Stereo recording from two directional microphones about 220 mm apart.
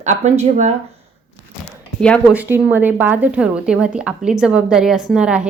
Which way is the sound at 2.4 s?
10° right (ahead or behind).